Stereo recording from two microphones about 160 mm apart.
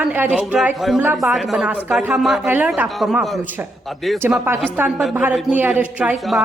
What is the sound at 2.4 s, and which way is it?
Speech, 10° right (ahead or behind).